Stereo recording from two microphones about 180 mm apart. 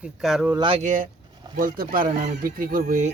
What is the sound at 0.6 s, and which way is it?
Speech, 35° right (ahead or behind).